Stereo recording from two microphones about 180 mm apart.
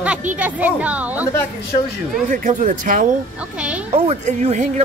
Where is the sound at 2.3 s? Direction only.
45° right (ahead or behind).